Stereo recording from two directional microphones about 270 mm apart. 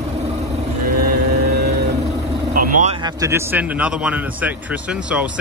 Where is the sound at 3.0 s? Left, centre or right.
Centre.